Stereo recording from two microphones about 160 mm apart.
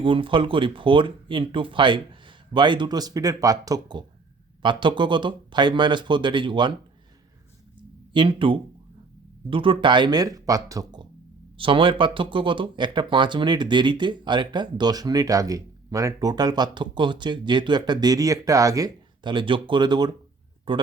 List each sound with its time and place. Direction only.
0.0 s speech: 30° right (ahead or behind)
8.1 s speech: 30° right (ahead or behind)